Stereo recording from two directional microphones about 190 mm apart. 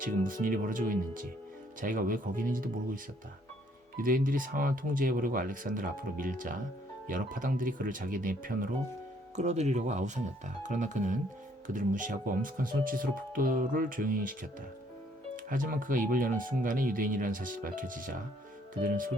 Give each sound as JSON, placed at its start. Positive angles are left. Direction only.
{"t": 0.0, "sound": "speech", "side_deg": -45}